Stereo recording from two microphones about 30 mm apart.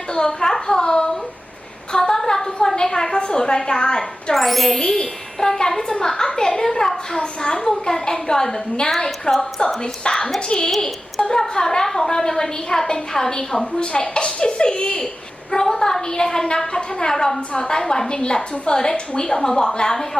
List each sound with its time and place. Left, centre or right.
0.1 s a child's voice: left
0.8 s hands: left
1.9 s a sound: left
4.4 s speech: centre
4.8 s a woman's voice: centre
7.2 s a woman's voice: left
9.6 s a woman's voice: left
13.7 s speech: left
15.5 s a woman's voice: centre